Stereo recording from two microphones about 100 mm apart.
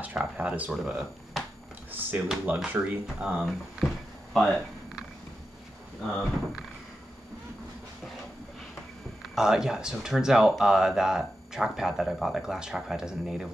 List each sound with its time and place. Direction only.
0.0 s speech: 15° right (ahead or behind)
1.9 s speech: 20° right (ahead or behind)
3.3 s a sound: centre (ahead or behind)
9.3 s speech: 5° right (ahead or behind)